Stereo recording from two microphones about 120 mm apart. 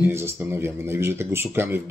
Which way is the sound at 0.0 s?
20° right (ahead or behind).